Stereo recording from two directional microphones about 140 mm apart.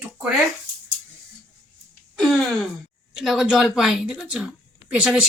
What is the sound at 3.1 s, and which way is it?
A woman's voice, centre (ahead or behind).